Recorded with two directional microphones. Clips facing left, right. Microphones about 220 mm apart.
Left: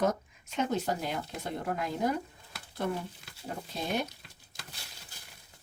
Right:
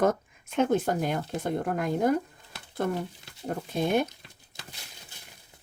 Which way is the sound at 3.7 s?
55° right (ahead or behind).